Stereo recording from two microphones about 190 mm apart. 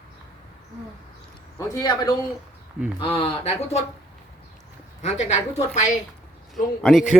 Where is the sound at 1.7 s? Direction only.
20° left (ahead or behind).